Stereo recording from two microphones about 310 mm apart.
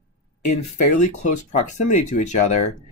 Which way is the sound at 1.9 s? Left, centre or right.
Left.